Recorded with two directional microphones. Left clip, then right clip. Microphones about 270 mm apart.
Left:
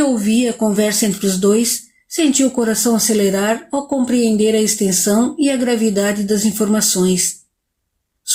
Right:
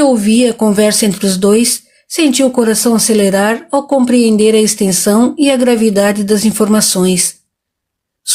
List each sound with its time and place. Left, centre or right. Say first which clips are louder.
0.0 s speech: right 6 dB; right